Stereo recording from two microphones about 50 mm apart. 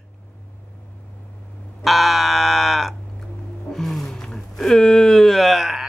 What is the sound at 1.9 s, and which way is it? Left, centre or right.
Fire alarm, centre.